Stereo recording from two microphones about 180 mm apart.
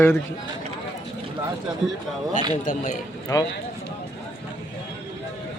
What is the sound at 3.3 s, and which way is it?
Speech, 20° left (ahead or behind).